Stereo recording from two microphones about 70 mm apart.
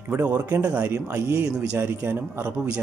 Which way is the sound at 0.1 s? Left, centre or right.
Right.